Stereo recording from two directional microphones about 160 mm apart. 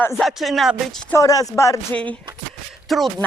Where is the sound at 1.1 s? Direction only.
20° left (ahead or behind).